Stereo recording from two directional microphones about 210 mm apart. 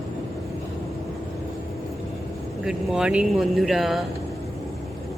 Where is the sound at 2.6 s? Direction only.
5° right (ahead or behind).